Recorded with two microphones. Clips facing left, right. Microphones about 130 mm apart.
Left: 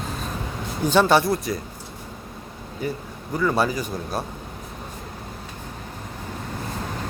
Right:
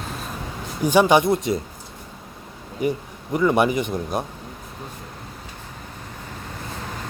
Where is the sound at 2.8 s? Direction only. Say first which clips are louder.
Right 5 dB; 20° right (ahead or behind).